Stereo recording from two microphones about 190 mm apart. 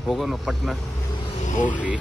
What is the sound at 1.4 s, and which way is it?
Vehicle, 40° left (ahead or behind).